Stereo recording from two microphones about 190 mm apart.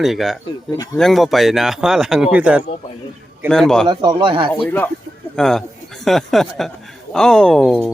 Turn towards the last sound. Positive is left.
turn(degrees=0)  # may be behind; listen again after turning